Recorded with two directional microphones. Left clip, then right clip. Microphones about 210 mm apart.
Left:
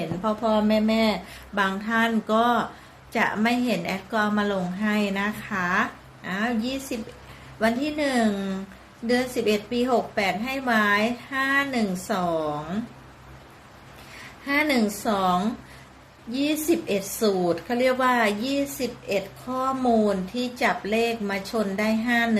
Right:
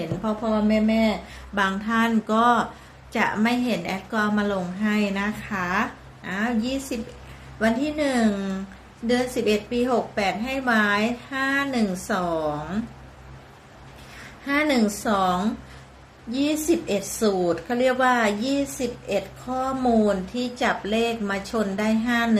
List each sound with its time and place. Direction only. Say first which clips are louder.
0.0 s a woman's voice: left 2 dB; 5° left (ahead or behind)
14.4 s a woman's voice: right 1 dB; 5° left (ahead or behind)